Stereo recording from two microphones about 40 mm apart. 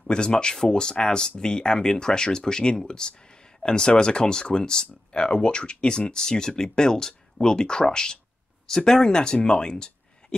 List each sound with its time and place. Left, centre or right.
0.0 s speech: left